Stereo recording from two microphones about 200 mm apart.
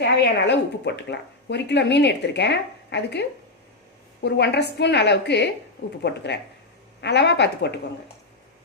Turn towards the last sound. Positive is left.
turn(degrees=55)  # may be behind; listen again after turning